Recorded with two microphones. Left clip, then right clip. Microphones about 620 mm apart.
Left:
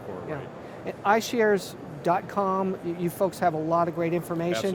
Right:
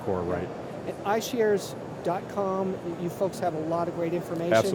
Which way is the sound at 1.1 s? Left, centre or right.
Left.